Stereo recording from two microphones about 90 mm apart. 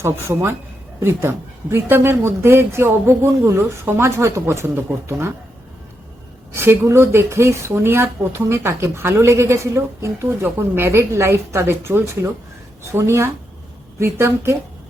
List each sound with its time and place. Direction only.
0.0 s speech: 30° right (ahead or behind)
6.5 s speech: 30° right (ahead or behind)